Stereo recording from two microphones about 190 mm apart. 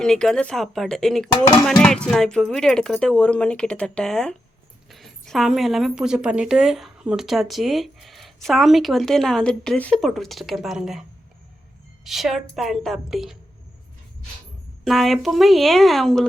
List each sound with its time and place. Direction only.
0.0 s a woman's voice: 5° left (ahead or behind)
1.3 s a sound: 25° left (ahead or behind)
1.8 s a woman's voice: 5° left (ahead or behind)
12.0 s a woman's voice: centre (ahead or behind)
14.8 s a woman's voice: centre (ahead or behind)